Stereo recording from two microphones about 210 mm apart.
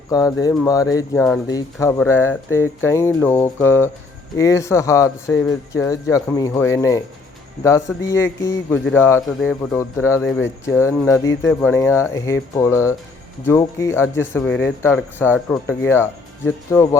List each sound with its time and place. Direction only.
0.1 s speech: 15° left (ahead or behind)
9.2 s speech: centre (ahead or behind)
9.7 s speech: 15° left (ahead or behind)